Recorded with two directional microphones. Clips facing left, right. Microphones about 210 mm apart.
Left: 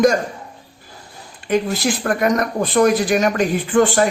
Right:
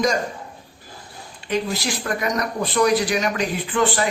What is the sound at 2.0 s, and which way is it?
Speech, 55° left (ahead or behind).